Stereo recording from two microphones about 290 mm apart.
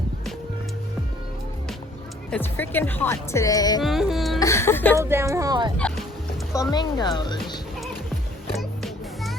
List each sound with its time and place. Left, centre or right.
2.3 s speech: centre
3.8 s music: centre
4.4 s speech: centre
4.9 s speech: centre
6.5 s speech: centre
8.5 s music: centre